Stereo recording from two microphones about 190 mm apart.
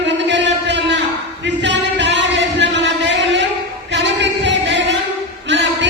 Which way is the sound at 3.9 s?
65° right (ahead or behind).